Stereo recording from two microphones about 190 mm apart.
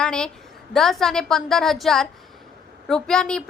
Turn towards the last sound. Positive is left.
turn(degrees=5)  # may be behind; listen again after turning